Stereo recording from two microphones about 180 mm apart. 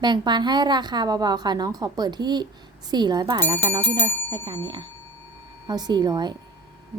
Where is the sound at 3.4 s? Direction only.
10° left (ahead or behind).